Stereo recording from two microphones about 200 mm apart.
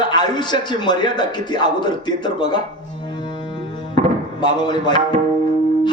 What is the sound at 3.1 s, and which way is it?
Music, 25° left (ahead or behind).